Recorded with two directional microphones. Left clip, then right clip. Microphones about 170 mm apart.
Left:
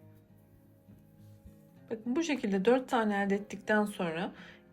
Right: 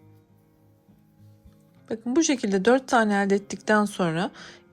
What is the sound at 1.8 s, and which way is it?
A woman's voice, 35° right (ahead or behind).